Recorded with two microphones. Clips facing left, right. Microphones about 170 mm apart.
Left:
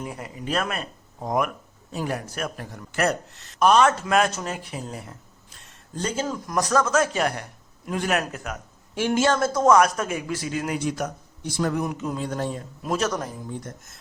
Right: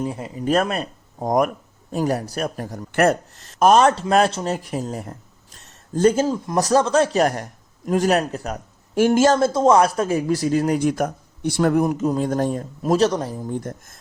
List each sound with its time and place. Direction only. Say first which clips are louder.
0.0 s speech: right 7 dB; 30° right (ahead or behind)
0.4 s a man's voice: right 7 dB; 40° right (ahead or behind)
2.9 s speech: right 6 dB; 50° right (ahead or behind)
6.2 s a man's voice: right 5 dB; 30° right (ahead or behind)
9.4 s a man's voice: right 3 dB; 25° right (ahead or behind)
10.8 s speech: right 6 dB; 55° right (ahead or behind); by 13.4 s 30° right (ahead or behind)
13.5 s speech: right 7 dB; 50° right (ahead or behind)